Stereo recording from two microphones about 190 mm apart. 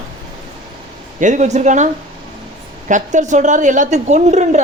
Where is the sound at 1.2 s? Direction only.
40° right (ahead or behind).